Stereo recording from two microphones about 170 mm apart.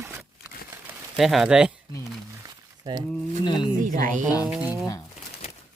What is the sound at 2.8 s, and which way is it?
Speech, 25° right (ahead or behind).